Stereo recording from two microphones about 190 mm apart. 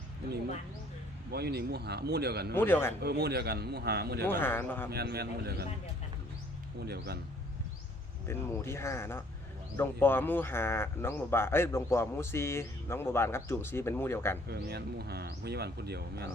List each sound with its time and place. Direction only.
1.3 s speech: 60° right (ahead or behind)
2.6 s speech: 10° left (ahead or behind)
3.0 s speech: 55° right (ahead or behind)
4.3 s speech: 10° left (ahead or behind)
4.9 s speech: 60° right (ahead or behind)
6.8 s speech: 60° right (ahead or behind)
8.3 s speech: 15° left (ahead or behind)
14.4 s speech: 55° right (ahead or behind)